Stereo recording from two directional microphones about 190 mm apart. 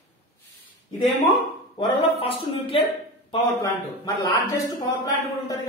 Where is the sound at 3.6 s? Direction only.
15° left (ahead or behind).